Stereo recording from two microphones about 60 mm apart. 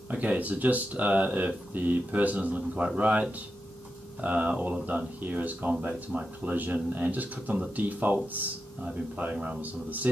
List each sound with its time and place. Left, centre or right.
0.1 s speech: right